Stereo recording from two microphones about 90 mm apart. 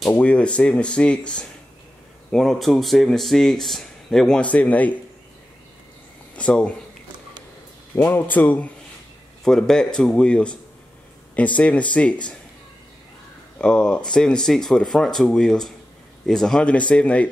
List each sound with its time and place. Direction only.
0.1 s speech: 15° left (ahead or behind)
6.3 s speech: 15° left (ahead or behind)
7.9 s speech: 25° left (ahead or behind)
9.4 s speech: 5° left (ahead or behind)
13.6 s speech: 10° left (ahead or behind)